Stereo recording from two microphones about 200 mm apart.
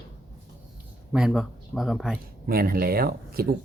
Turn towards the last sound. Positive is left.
turn(degrees=-50)  # may be behind; listen again after turning